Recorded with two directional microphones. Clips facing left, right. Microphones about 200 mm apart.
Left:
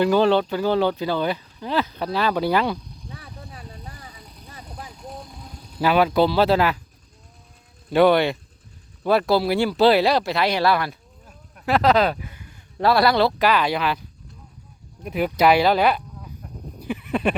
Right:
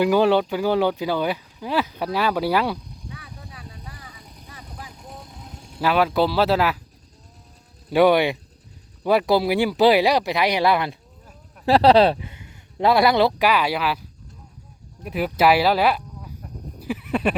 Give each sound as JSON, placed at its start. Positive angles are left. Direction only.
{"t": 0.0, "sound": "speech", "side_deg": -10}
{"t": 3.1, "sound": "vehicle", "side_deg": 35}
{"t": 5.5, "sound": "vehicle", "side_deg": -25}
{"t": 5.8, "sound": "speech", "side_deg": 0}
{"t": 7.9, "sound": "speech", "side_deg": -10}
{"t": 11.6, "sound": "speech", "side_deg": -30}
{"t": 15.0, "sound": "speech", "side_deg": 0}
{"t": 16.8, "sound": "neigh", "side_deg": -5}